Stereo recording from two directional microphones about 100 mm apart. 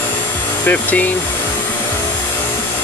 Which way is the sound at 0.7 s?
15° left (ahead or behind).